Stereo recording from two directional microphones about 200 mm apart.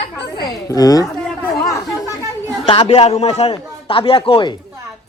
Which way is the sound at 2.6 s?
30° left (ahead or behind).